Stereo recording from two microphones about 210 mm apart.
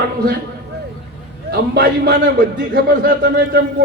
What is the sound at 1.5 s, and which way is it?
A man's voice, 50° right (ahead or behind).